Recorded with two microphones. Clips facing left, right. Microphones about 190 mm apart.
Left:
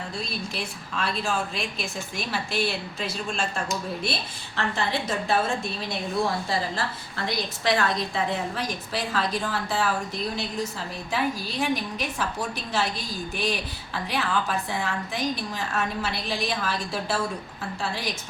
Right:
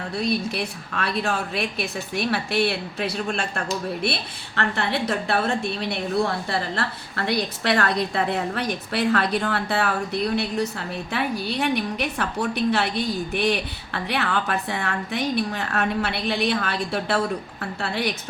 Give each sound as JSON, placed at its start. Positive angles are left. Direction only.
{"t": 0.2, "sound": "a woman's voice", "side_deg": -65}